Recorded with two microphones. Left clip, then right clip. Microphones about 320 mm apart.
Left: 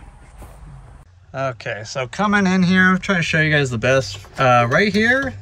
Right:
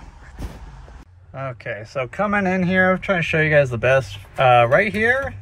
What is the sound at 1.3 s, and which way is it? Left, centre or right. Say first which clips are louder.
Speech: left 5 dB; centre.